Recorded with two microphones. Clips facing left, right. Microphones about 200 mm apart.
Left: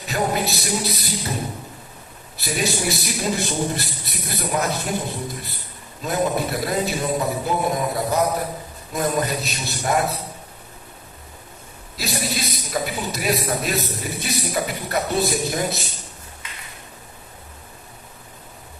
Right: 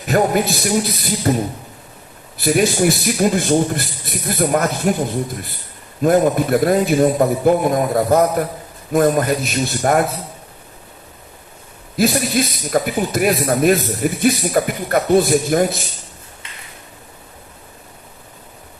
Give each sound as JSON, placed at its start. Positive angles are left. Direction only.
{"t": 0.0, "sound": "a man's voice", "side_deg": -50}
{"t": 6.0, "sound": "a man's voice", "side_deg": -50}
{"t": 11.9, "sound": "a man's voice", "side_deg": -50}